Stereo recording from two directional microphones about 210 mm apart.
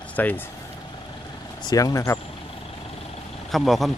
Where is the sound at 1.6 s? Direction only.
20° left (ahead or behind).